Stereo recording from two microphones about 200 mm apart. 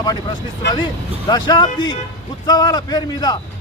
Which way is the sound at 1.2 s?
20° left (ahead or behind).